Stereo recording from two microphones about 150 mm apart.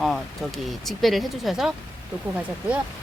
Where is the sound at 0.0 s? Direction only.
Centre (ahead or behind).